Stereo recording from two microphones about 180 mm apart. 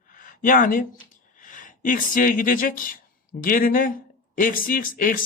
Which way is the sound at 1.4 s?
45° left (ahead or behind).